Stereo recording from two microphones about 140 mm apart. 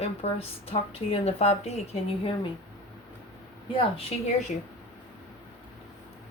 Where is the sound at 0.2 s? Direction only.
45° left (ahead or behind).